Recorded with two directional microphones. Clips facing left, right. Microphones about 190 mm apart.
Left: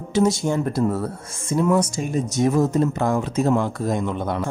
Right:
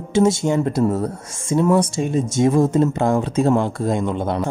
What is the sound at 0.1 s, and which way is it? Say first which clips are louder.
Speech: right 3 dB; 25° right (ahead or behind).